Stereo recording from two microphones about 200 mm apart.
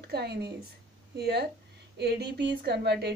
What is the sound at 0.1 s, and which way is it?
A woman's voice, 55° right (ahead or behind).